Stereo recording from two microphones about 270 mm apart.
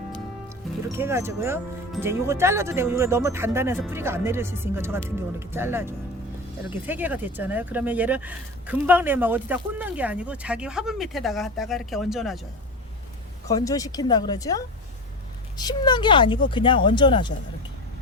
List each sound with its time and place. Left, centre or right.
0.9 s speech: centre
13.5 s speech: centre